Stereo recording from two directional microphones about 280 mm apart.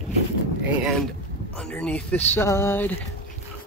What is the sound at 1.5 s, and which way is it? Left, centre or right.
Speech, centre.